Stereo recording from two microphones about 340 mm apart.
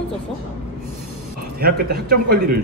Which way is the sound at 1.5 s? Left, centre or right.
Right.